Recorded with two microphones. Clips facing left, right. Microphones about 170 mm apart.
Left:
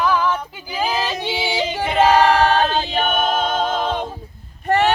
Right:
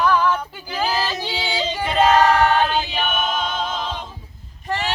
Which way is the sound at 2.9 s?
50° left (ahead or behind).